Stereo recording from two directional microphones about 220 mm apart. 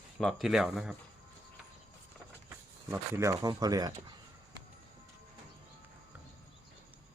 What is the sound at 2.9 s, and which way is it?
Speech, 10° right (ahead or behind).